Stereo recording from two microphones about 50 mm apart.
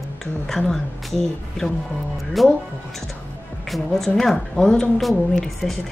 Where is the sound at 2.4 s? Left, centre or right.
Centre.